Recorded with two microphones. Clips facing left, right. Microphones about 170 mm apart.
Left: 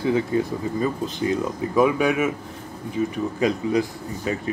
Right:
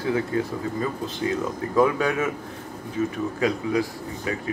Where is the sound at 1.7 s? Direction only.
15° left (ahead or behind).